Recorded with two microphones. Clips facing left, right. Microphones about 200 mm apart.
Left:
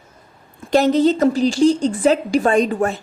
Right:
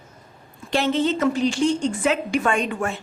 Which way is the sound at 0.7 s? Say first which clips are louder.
Left 7 dB; 40° left (ahead or behind).